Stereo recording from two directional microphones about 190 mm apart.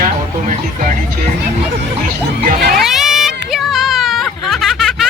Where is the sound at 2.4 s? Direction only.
50° right (ahead or behind).